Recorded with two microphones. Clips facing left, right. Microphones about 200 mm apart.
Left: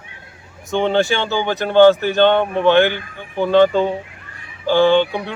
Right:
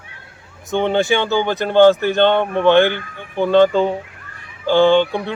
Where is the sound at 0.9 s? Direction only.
15° right (ahead or behind).